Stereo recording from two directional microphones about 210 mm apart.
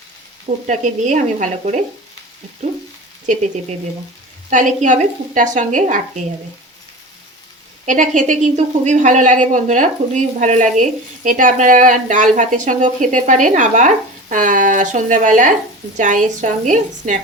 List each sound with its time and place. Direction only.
0.7 s a woman's voice: 35° right (ahead or behind)
4.4 s a woman's voice: 35° right (ahead or behind)
7.9 s a woman's voice: 35° right (ahead or behind)